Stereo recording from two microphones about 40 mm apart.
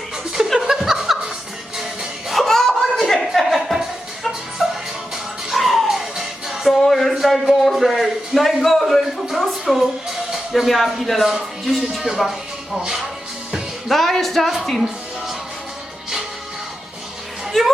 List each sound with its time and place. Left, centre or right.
0.3 s chuckle: centre
2.3 s a sound: centre
3.2 s chuckle: centre
4.5 s music: centre
6.7 s music: centre
7.1 s a sound: centre
10.1 s music: centre
10.7 s speech: centre
12.8 s speech: centre
13.8 s music: centre
17.5 s music: centre